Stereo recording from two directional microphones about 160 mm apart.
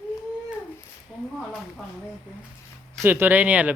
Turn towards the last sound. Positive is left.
turn(degrees=-10)  # may be behind; listen again after turning